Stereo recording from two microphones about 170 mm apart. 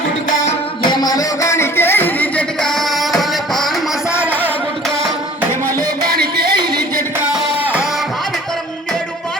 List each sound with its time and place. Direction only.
0.8 s music: 25° left (ahead or behind); by 4.5 s 10° left (ahead or behind)
6.1 s a sound: 65° right (ahead or behind)
7.2 s music: 10° right (ahead or behind)